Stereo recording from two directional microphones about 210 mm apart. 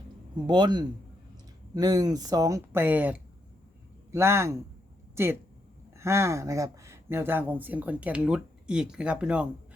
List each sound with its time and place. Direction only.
0.4 s a man's voice: 20° right (ahead or behind)